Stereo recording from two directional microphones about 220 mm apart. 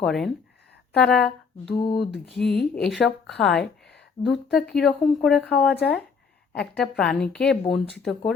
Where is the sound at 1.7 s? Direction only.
20° left (ahead or behind).